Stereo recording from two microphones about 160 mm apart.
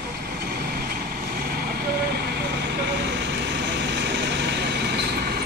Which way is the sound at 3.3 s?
90° right.